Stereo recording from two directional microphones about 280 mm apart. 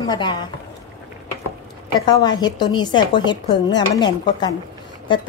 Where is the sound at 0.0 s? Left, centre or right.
Centre.